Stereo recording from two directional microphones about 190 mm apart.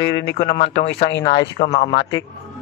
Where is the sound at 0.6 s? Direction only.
30° left (ahead or behind).